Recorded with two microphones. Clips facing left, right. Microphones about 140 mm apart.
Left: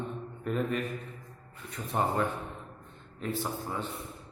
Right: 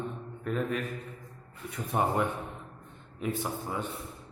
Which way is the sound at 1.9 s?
15° right (ahead or behind).